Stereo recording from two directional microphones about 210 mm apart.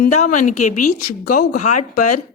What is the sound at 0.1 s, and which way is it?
A woman's voice, 35° left (ahead or behind).